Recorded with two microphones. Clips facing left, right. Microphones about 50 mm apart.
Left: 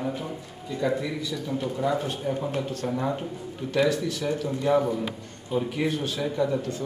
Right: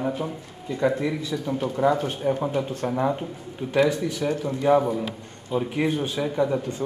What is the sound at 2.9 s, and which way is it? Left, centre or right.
A man's voice, centre.